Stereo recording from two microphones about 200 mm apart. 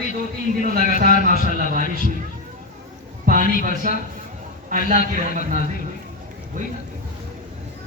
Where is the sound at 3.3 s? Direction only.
40° right (ahead or behind).